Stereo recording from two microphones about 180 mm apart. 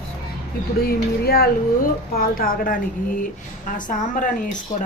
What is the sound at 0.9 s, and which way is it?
Speech, 60° left (ahead or behind).